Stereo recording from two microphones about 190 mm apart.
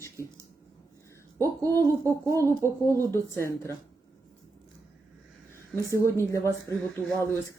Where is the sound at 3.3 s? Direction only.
15° left (ahead or behind).